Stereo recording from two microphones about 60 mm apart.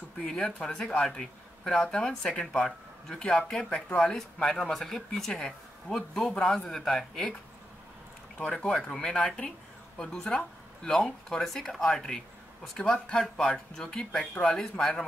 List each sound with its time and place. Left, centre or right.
0.2 s speech: centre
8.5 s speech: centre